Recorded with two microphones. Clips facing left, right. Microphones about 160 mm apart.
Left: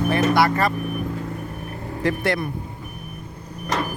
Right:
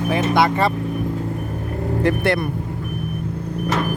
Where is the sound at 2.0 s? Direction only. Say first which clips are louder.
Right 3 dB; 60° right (ahead or behind).